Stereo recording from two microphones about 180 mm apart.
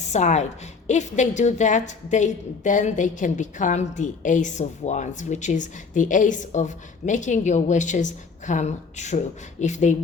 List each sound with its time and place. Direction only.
0.0 s a woman's voice: 40° left (ahead or behind)